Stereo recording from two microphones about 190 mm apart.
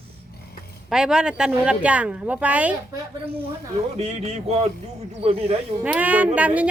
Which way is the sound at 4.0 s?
35° right (ahead or behind).